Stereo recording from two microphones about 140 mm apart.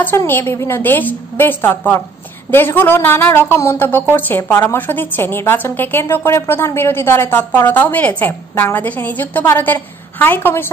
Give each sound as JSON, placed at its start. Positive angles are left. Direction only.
{"t": 0.0, "sound": "a woman's voice", "side_deg": 15}